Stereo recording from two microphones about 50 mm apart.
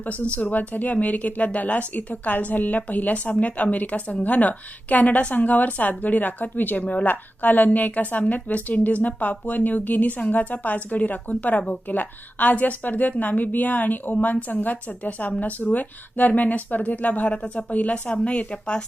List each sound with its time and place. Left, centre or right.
0.1 s speech: left